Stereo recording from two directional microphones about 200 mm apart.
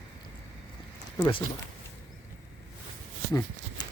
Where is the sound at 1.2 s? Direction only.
25° left (ahead or behind).